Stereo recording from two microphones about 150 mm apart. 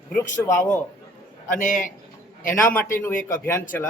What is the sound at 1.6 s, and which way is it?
Speech, 60° left (ahead or behind).